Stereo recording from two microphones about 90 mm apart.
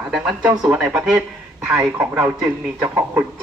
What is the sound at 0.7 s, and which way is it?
Speech, 10° right (ahead or behind).